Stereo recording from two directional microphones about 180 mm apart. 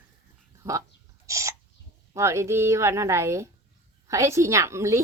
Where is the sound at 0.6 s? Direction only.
15° right (ahead or behind).